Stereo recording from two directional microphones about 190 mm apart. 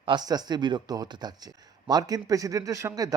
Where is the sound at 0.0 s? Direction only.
25° right (ahead or behind).